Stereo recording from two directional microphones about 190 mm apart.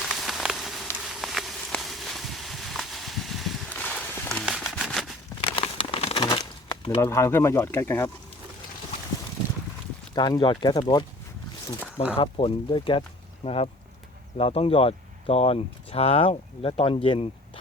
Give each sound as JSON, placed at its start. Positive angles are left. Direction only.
{"t": 0.2, "sound": "a sound", "side_deg": 0}
{"t": 1.0, "sound": "walk", "side_deg": 0}
{"t": 5.5, "sound": "crumpling", "side_deg": 30}
{"t": 6.2, "sound": "bird", "side_deg": 20}
{"t": 7.0, "sound": "speech", "side_deg": 15}
{"t": 10.2, "sound": "speech", "side_deg": 25}
{"t": 12.1, "sound": "speech", "side_deg": 30}